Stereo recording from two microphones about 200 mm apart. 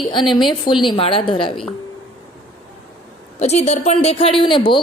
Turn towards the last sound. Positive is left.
turn(degrees=25)  # may be behind; listen again after turning